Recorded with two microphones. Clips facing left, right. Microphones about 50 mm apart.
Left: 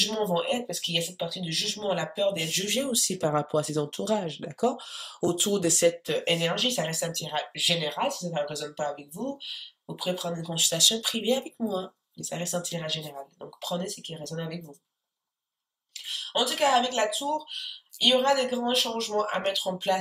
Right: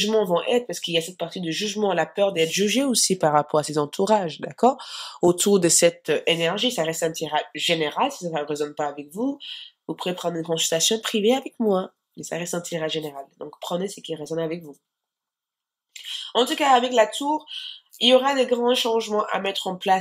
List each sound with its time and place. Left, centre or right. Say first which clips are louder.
0.0 s speech: right 6 dB; right
6.0 s speech: right 5 dB; right
16.1 s speech: right 6 dB; right